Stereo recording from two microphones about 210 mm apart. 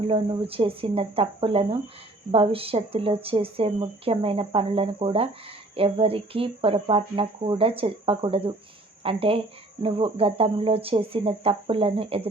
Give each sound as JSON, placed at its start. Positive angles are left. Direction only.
{"t": 0.1, "sound": "speech", "side_deg": -25}